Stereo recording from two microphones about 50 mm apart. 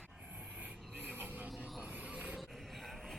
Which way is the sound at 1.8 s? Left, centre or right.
Right.